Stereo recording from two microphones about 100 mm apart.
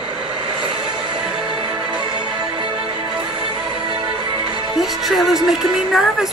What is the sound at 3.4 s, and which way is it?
Music, 65° right (ahead or behind).